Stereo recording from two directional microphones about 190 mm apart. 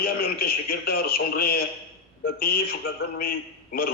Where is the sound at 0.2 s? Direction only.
55° left (ahead or behind).